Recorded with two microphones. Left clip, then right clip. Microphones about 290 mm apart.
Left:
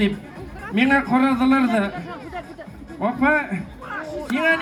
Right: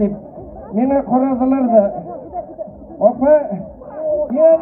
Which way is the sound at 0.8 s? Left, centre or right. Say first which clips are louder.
Right 3 dB; left.